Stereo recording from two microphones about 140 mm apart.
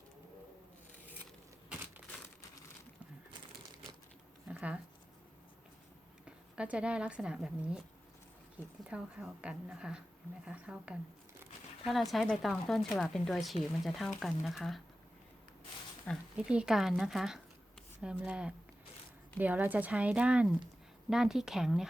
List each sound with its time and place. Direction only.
4.4 s a sound: 10° right (ahead or behind)
6.2 s speech: 10° right (ahead or behind)
8.9 s a woman's voice: 5° right (ahead or behind)
16.1 s speech: 10° left (ahead or behind)
16.5 s a woman's voice: 5° right (ahead or behind)